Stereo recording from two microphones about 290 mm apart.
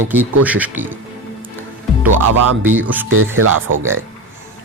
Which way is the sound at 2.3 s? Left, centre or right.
Right.